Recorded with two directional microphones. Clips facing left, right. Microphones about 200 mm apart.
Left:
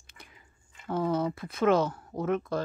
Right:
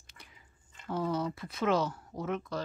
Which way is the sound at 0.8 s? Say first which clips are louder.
Left 4 dB; 55° left (ahead or behind).